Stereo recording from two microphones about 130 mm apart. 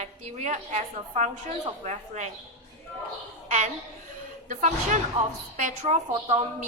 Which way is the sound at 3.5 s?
70° right (ahead or behind).